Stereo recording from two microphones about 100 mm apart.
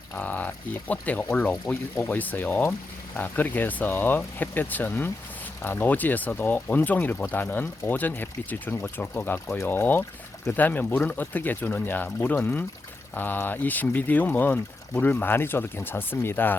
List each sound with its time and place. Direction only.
0.1 s speech: 15° left (ahead or behind)